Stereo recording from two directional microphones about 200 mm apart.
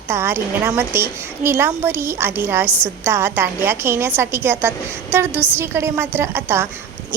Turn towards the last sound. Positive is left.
turn(degrees=-10)  # may be behind; listen again after turning